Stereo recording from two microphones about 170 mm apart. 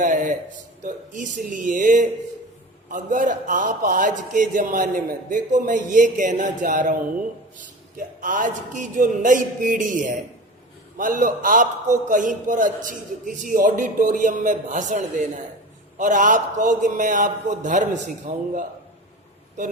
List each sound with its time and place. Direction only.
0.0 s a sound: 50° right (ahead or behind)
0.8 s a man's voice: 45° right (ahead or behind)
7.9 s a man's voice: 50° right (ahead or behind)